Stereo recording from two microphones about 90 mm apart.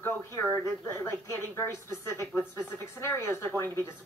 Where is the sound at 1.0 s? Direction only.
30° left (ahead or behind).